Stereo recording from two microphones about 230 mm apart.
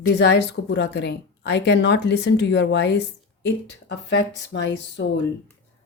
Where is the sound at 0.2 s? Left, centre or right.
Left.